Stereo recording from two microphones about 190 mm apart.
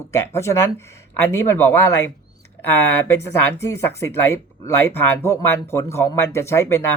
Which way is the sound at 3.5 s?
15° left (ahead or behind).